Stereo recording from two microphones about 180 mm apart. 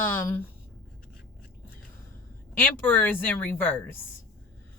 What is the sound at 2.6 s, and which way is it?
Speech, 10° left (ahead or behind).